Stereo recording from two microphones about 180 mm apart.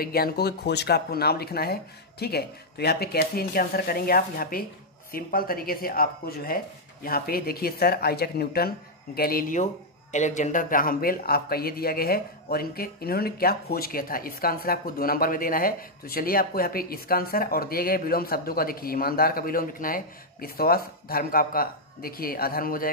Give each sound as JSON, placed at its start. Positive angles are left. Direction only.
{"t": 0.0, "sound": "speech", "side_deg": 60}